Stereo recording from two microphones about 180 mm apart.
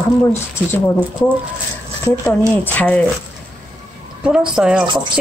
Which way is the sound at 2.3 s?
10° left (ahead or behind).